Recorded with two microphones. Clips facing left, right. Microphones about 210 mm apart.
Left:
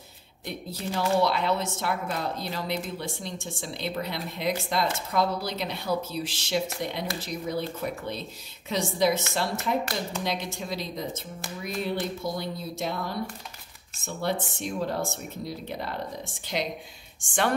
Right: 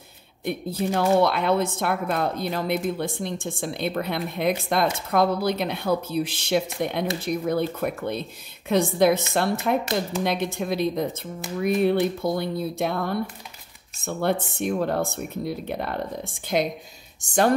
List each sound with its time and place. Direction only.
0.5 s speech: 55° right (ahead or behind)
17.2 s speech: 40° right (ahead or behind)